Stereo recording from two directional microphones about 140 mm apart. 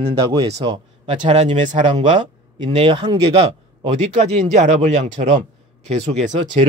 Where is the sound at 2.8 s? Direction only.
35° right (ahead or behind).